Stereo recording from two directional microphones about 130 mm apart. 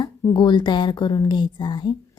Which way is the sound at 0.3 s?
35° left (ahead or behind).